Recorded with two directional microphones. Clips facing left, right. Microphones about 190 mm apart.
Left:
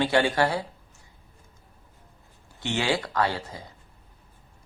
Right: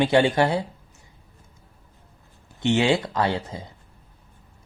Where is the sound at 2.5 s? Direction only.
20° right (ahead or behind).